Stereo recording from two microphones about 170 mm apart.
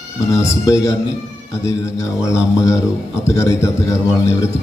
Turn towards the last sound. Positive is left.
turn(degrees=15)  # may be behind; listen again after turning